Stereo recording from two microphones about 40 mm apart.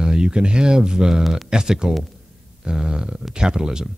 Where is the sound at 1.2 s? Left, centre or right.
Centre.